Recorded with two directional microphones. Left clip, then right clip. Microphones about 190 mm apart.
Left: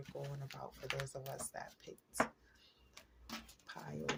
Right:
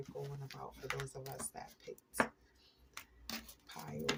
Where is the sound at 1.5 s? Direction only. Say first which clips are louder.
Left 2 dB; 30° left (ahead or behind).